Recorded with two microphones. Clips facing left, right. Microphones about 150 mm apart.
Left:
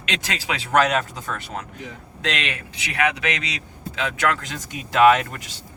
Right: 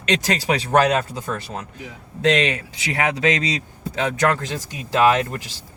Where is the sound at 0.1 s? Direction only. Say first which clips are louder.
Right 7 dB; 40° right (ahead or behind).